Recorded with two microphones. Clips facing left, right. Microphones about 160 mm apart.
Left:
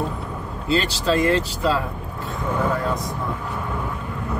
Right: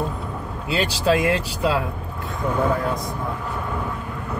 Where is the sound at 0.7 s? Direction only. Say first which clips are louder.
Even; 10° right (ahead or behind).